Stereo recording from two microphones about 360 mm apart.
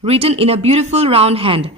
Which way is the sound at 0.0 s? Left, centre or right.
Centre.